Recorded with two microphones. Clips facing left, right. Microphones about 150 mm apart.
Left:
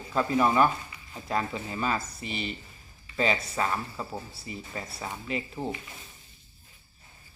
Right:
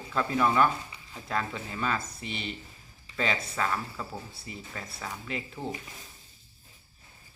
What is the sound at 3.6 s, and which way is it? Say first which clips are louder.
Speech: left 1 dB; 15° left (ahead or behind).